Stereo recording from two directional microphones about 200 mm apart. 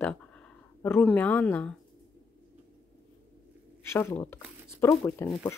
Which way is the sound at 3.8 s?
10° left (ahead or behind).